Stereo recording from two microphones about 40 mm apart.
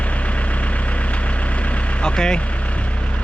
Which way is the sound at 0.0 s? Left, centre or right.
Left.